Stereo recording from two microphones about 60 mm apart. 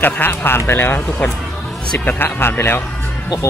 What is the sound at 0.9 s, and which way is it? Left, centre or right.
Speech, left.